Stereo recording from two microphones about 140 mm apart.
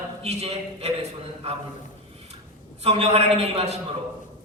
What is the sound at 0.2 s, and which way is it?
Speech, 45° right (ahead or behind).